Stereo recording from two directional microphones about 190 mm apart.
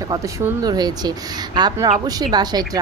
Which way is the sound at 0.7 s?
20° right (ahead or behind).